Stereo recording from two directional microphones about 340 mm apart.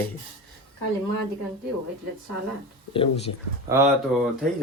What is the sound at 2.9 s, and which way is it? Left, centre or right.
Speech, centre.